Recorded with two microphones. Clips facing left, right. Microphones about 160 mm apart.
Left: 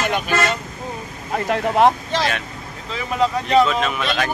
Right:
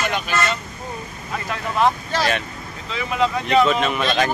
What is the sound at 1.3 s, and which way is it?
Speech, 60° left (ahead or behind).